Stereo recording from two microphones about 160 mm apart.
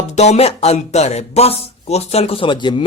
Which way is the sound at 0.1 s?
45° left (ahead or behind).